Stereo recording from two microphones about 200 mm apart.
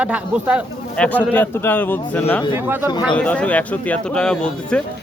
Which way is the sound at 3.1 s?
5° left (ahead or behind).